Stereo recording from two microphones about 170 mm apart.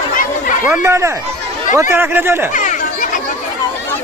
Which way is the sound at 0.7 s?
15° right (ahead or behind).